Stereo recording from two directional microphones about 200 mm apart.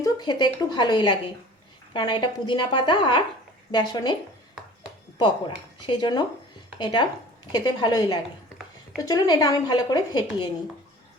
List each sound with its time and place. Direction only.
0.0 s speech: 20° left (ahead or behind)